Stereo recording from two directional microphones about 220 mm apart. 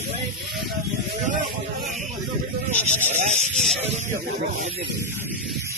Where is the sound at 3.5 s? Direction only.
Centre (ahead or behind).